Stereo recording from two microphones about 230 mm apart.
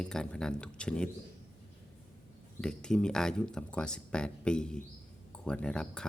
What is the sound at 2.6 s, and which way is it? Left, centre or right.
Speech, centre.